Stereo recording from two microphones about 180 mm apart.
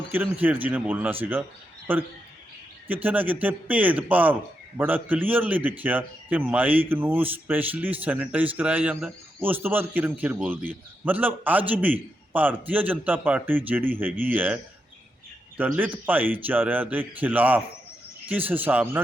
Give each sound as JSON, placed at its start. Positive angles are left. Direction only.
{"t": 0.1, "sound": "a man's voice", "side_deg": -10}